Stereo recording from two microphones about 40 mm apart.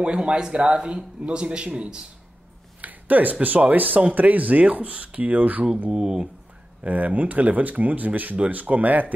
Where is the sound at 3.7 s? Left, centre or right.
Right.